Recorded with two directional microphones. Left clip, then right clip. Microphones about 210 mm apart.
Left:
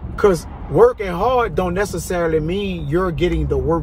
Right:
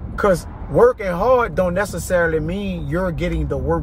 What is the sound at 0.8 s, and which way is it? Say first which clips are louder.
Speech: even; 25° right (ahead or behind).